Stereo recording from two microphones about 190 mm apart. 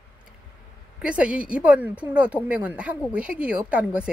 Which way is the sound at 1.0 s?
5° right (ahead or behind).